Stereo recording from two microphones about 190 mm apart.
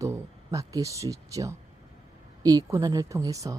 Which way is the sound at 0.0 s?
15° right (ahead or behind).